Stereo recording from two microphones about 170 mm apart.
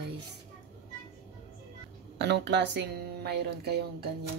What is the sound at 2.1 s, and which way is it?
Speech, 90° right.